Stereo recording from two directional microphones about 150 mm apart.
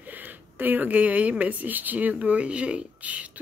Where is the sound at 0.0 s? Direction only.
10° right (ahead or behind).